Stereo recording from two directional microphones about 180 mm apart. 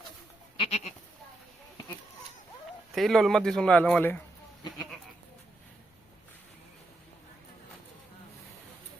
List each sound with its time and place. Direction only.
0.6 s goat: 35° left (ahead or behind)
2.9 s a man's voice: centre (ahead or behind)